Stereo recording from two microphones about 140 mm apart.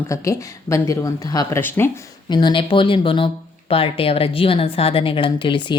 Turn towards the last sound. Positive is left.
turn(degrees=35)  # may be behind; listen again after turning